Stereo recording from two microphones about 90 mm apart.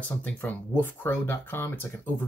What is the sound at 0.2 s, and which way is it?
Speech, 20° left (ahead or behind).